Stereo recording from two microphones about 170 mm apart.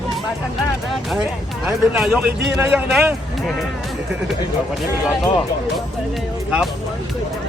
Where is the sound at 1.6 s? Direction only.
5° right (ahead or behind).